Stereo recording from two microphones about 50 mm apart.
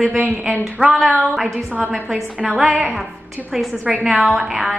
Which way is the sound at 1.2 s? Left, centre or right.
Centre.